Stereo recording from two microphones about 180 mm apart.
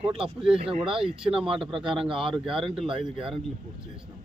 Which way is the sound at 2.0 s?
30° right (ahead or behind).